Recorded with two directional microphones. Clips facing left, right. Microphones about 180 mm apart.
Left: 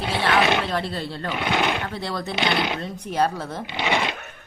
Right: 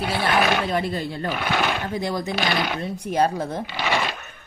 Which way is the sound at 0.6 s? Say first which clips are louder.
Right 2 dB; 10° right (ahead or behind).